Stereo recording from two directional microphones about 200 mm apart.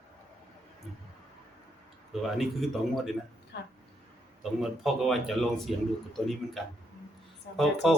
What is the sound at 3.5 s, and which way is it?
Speech, 60° left (ahead or behind).